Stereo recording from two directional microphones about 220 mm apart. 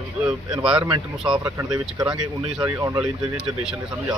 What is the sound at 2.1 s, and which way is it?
Speech, 5° right (ahead or behind).